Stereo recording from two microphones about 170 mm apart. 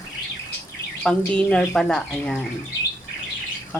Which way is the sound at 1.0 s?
5° left (ahead or behind).